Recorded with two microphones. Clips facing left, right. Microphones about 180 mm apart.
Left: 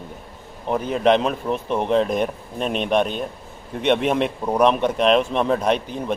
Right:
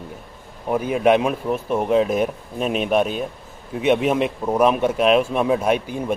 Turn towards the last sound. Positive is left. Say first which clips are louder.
# right 1 dB
turn(degrees=-10)  # may be behind; listen again after turning